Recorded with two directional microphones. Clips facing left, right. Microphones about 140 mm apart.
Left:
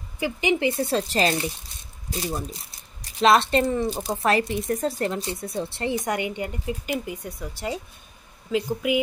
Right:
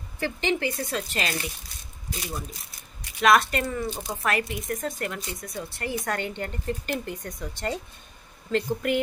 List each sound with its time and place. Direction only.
0.2 s a woman's voice: 15° left (ahead or behind)
3.9 s speech: 35° left (ahead or behind); by 9.0 s 5° left (ahead or behind)